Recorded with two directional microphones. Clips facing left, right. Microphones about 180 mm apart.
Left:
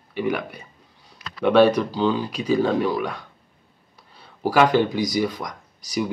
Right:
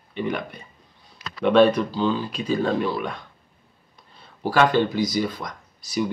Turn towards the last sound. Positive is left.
turn(degrees=15)  # may be behind; listen again after turning